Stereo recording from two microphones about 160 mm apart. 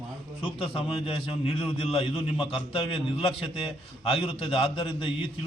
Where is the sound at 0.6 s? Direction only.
35° left (ahead or behind).